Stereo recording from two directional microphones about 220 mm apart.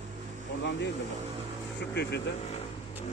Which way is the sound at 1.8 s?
50° left (ahead or behind).